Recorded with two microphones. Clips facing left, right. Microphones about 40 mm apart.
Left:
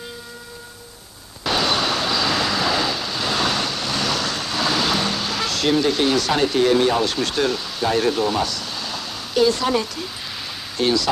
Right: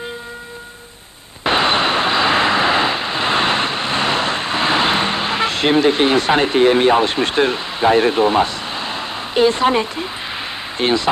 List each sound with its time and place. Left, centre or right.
1.4 s vehicle: right
10.8 s speech: right